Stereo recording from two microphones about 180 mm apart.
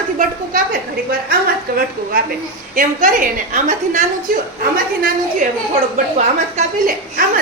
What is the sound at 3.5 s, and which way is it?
A woman's voice, 45° right (ahead or behind).